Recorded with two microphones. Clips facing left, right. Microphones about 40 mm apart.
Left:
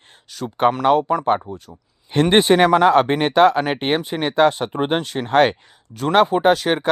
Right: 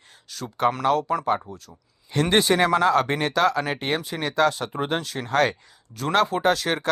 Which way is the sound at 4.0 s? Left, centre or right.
Left.